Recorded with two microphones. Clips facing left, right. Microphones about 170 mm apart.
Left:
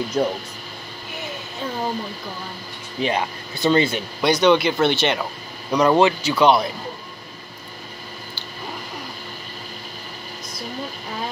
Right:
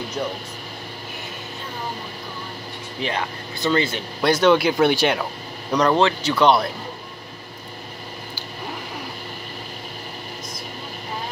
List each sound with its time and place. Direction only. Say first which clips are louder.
0.2 s speech: left 6 dB; 45° left (ahead or behind)
3.0 s speech: left 4 dB; 15° left (ahead or behind)
4.2 s speech: even; 5° right (ahead or behind)
5.9 s speech: left 3 dB; 10° left (ahead or behind)